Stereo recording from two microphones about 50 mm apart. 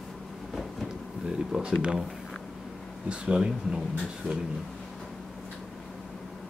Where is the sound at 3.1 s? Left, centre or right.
Centre.